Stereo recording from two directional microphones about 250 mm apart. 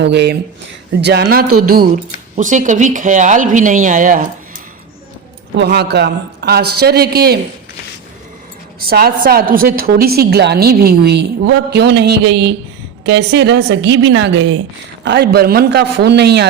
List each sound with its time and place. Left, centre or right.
0.0 s a woman's voice: right
1.5 s speech: right
2.3 s a woman's voice: right
5.5 s a woman's voice: right
8.8 s a woman's voice: right